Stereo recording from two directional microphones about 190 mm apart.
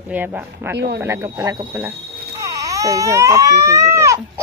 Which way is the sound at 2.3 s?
15° right (ahead or behind).